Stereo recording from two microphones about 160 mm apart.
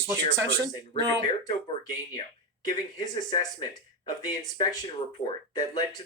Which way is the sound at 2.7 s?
25° left (ahead or behind).